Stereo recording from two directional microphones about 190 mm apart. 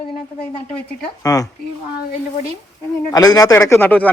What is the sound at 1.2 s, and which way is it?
Speech, 20° left (ahead or behind).